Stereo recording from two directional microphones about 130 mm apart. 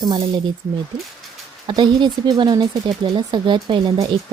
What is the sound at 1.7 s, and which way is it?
Speech, 35° right (ahead or behind).